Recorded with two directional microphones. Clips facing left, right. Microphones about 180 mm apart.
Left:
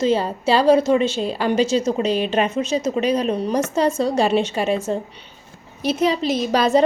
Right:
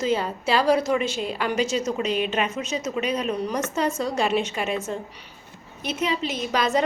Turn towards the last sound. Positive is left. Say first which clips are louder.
# left 6 dB
turn(degrees=35)  # may be behind; listen again after turning